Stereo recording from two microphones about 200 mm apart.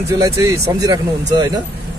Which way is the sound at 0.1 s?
20° right (ahead or behind).